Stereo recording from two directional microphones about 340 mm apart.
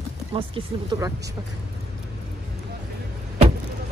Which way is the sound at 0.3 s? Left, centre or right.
Centre.